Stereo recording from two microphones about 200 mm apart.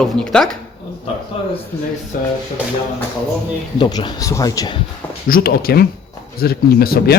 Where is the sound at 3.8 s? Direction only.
20° left (ahead or behind).